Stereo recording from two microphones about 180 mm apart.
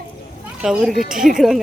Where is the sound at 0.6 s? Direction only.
Centre (ahead or behind).